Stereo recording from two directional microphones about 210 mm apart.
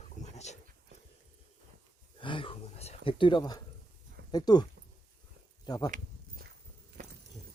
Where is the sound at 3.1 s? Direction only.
25° left (ahead or behind).